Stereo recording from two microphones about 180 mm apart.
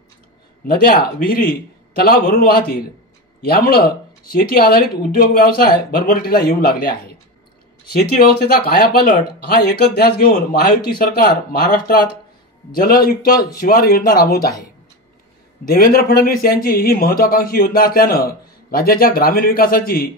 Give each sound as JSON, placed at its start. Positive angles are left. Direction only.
{"t": 0.6, "sound": "speech", "side_deg": 55}
{"t": 2.0, "sound": "speech", "side_deg": 55}
{"t": 15.6, "sound": "speech", "side_deg": 55}